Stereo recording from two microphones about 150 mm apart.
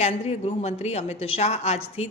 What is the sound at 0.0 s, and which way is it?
A woman's voice, 45° left (ahead or behind).